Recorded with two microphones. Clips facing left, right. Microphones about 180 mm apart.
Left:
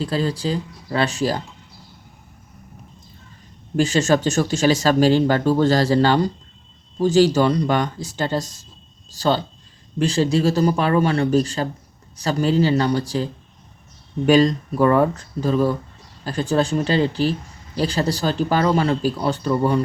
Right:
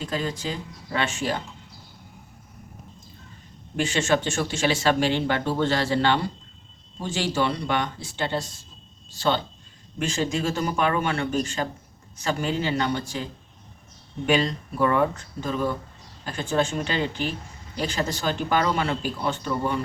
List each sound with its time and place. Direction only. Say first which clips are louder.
0.0 s speech: left 6 dB; 35° left (ahead or behind)
3.8 s speech: left 6 dB; 40° left (ahead or behind)
14.3 s speech: left 8 dB; 40° left (ahead or behind)